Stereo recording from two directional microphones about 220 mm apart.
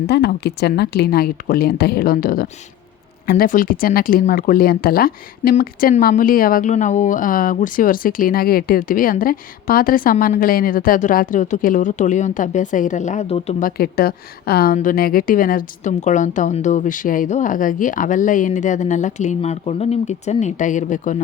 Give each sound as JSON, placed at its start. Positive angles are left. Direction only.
{"t": 0.1, "sound": "speech", "side_deg": 50}